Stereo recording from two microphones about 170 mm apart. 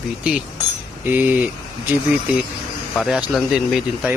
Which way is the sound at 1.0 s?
10° right (ahead or behind).